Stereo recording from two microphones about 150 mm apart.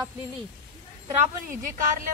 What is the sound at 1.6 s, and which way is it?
Speech, 60° right (ahead or behind).